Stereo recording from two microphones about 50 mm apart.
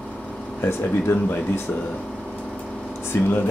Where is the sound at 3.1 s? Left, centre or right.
Left.